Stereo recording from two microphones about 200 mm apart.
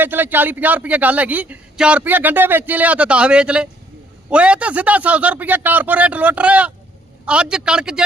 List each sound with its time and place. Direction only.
0.0 s speech: 10° right (ahead or behind)